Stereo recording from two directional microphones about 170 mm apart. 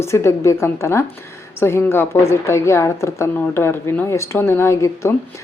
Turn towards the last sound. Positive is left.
turn(degrees=15)  # may be behind; listen again after turning